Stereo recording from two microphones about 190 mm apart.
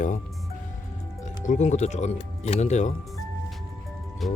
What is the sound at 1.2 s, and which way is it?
Speech, 40° left (ahead or behind).